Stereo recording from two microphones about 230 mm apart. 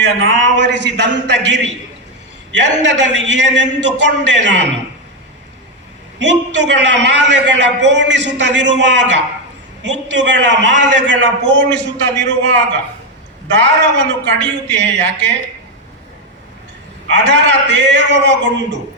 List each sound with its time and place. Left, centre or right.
0.0 s a man's voice: right
2.8 s a man's voice: right
6.1 s a man's voice: right
14.3 s speech: centre
14.8 s a man's voice: right
17.1 s a man's voice: right